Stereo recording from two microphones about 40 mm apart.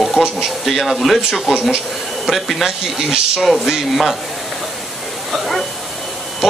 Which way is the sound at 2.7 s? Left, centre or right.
Centre.